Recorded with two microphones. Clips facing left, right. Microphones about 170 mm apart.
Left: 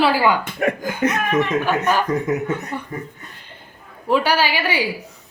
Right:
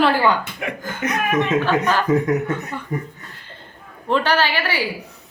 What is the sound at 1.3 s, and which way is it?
Speech, 20° right (ahead or behind).